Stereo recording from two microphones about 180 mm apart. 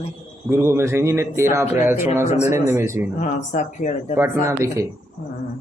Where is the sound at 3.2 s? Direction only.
40° left (ahead or behind).